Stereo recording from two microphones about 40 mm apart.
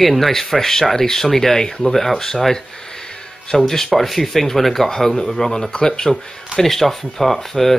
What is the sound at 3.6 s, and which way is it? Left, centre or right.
Speech, centre.